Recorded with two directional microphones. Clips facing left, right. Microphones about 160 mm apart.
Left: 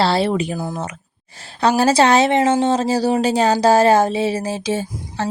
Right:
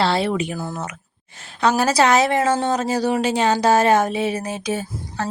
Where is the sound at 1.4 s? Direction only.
30° left (ahead or behind).